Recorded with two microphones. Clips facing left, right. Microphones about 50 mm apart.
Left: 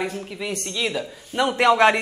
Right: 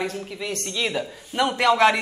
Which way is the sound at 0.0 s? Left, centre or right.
Centre.